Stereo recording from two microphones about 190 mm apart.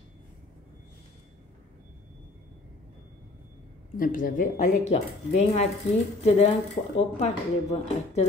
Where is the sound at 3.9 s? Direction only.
45° left (ahead or behind).